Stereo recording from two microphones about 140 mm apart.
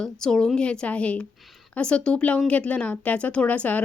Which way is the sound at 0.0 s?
5° left (ahead or behind).